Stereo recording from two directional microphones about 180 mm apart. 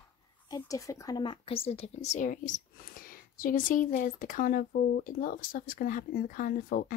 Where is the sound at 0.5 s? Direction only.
20° left (ahead or behind).